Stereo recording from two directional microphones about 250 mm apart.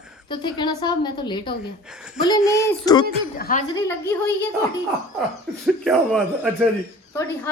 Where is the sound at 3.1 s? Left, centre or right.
Left.